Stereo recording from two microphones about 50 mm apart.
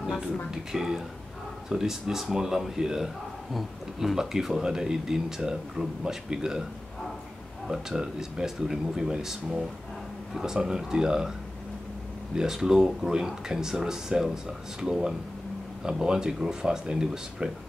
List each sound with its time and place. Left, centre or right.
0.5 s speech: centre
7.6 s speech: centre
12.4 s speech: centre